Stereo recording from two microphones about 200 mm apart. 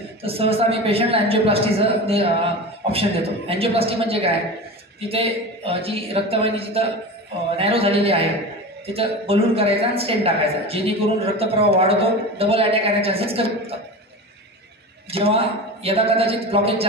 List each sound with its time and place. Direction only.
0.2 s a man's voice: 30° right (ahead or behind)
15.0 s a man's voice: 30° right (ahead or behind)